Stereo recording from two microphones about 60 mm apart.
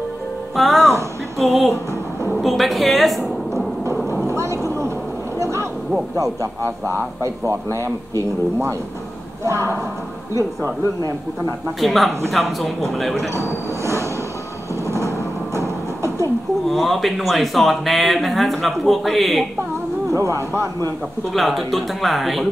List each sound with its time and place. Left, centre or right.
0.6 s speech: centre
4.3 s vehicle: right
5.4 s a sound: right
6.1 s speech: right
6.6 s speech: right
9.4 s speech: right
11.8 s speech: centre
14.9 s a sound: right
16.6 s speech: centre
20.1 s speech: right
21.3 s speech: centre